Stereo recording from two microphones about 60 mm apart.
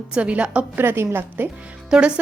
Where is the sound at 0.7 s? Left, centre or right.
Right.